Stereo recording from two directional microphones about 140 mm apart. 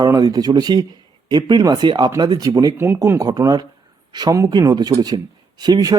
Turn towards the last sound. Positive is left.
turn(degrees=-30)  # may be behind; listen again after turning